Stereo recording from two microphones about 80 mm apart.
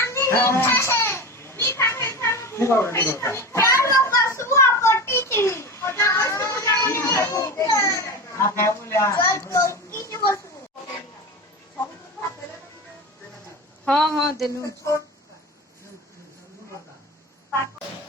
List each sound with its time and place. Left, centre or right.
0.0 s children playing: left
4.4 s a sound: left
13.8 s a woman's voice: centre